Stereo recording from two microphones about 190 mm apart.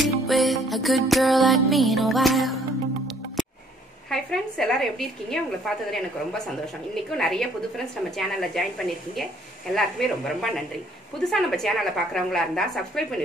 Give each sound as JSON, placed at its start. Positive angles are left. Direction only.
{"t": 0.0, "sound": "music", "side_deg": 0}
{"t": 4.1, "sound": "a woman's voice", "side_deg": 5}